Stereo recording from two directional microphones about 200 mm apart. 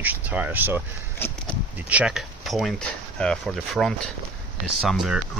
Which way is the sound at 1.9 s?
5° right (ahead or behind).